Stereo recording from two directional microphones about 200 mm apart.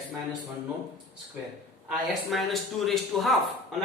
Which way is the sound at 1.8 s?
Centre (ahead or behind).